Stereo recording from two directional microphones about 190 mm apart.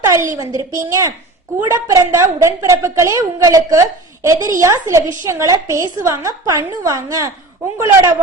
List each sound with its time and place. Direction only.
0.0 s a woman's voice: 15° right (ahead or behind)